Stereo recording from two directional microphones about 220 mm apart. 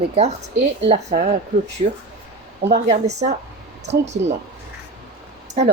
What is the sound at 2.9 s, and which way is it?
A woman's voice, 30° right (ahead or behind).